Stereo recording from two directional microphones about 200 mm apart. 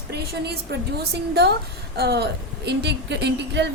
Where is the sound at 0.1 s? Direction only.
55° right (ahead or behind).